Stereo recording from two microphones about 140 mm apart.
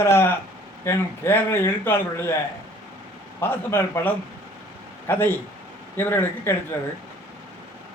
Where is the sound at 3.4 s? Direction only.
15° left (ahead or behind).